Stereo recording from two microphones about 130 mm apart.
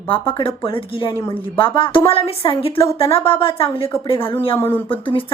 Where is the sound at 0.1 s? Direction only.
40° left (ahead or behind).